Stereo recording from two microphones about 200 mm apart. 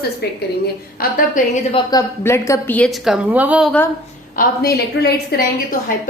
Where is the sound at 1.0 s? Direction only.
45° left (ahead or behind).